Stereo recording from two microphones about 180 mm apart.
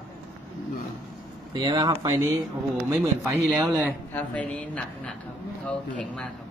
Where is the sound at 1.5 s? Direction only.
25° right (ahead or behind).